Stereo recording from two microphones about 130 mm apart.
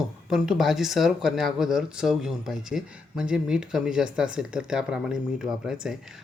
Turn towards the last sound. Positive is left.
turn(degrees=-5)  # may be behind; listen again after turning